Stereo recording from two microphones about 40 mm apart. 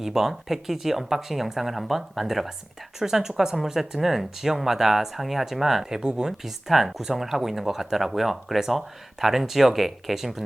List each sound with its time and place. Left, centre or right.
0.0 s speech: centre
6.0 s speech: centre
6.3 s speech: centre